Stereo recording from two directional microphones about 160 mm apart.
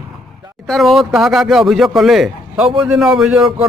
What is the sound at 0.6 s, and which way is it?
Speech, centre (ahead or behind).